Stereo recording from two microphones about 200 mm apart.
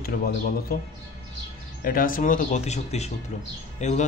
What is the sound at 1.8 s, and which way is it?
A man's voice, 45° left (ahead or behind).